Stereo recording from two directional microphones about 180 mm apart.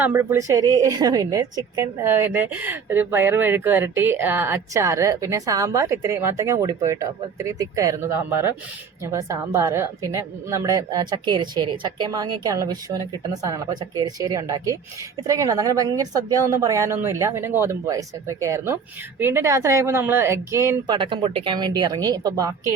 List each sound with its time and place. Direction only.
0.0 s a woman's voice: 10° right (ahead or behind)